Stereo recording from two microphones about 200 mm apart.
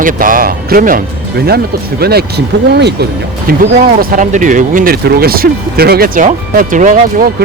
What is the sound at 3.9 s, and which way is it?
Speech, 40° right (ahead or behind).